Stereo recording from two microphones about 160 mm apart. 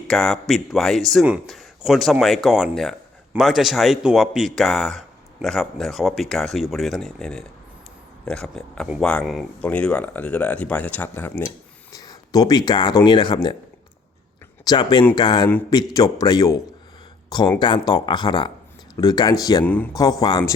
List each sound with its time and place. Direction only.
0.1 s speech: 5° left (ahead or behind); by 13.6 s 25° left (ahead or behind)
14.6 s speech: 25° left (ahead or behind)
19.6 s speech: 10° left (ahead or behind)
20.0 s speech: 20° left (ahead or behind)